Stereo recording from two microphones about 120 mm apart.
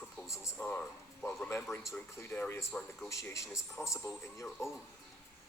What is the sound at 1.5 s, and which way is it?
A man's voice, 20° left (ahead or behind).